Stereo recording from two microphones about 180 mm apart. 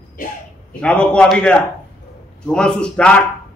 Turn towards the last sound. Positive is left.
turn(degrees=5)  # may be behind; listen again after turning